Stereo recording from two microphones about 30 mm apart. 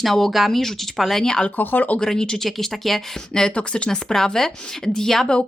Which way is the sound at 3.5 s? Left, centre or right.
Left.